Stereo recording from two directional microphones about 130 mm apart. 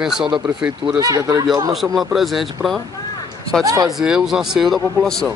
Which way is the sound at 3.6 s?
25° right (ahead or behind).